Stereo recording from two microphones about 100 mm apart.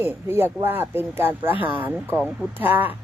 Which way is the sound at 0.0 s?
20° right (ahead or behind).